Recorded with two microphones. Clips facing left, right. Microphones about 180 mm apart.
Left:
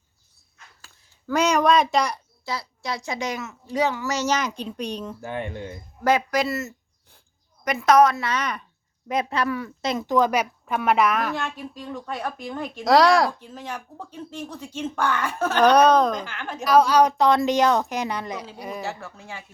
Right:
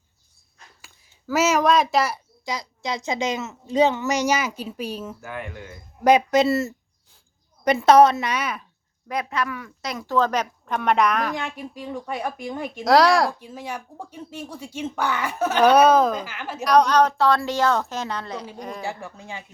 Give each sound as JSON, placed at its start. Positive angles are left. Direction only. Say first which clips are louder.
{"t": 1.3, "sound": "a woman's voice", "louder": "even", "side_deg": -5}
{"t": 2.4, "sound": "speech", "louder": "right 2 dB", "side_deg": -15}
{"t": 5.2, "sound": "speech", "louder": "left 4 dB", "side_deg": 30}
{"t": 6.0, "sound": "a woman's voice", "louder": "right 5 dB", "side_deg": -20}
{"t": 9.0, "sound": "speech", "louder": "left 2 dB", "side_deg": 25}
{"t": 10.2, "sound": "a woman's voice", "louder": "even", "side_deg": 10}
{"t": 11.3, "sound": "speech", "louder": "even", "side_deg": -15}
{"t": 12.8, "sound": "a woman's voice", "louder": "even", "side_deg": 0}
{"t": 18.8, "sound": "speech", "louder": "right 1 dB", "side_deg": -15}